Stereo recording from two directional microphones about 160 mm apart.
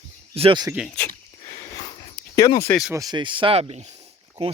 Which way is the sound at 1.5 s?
25° left (ahead or behind).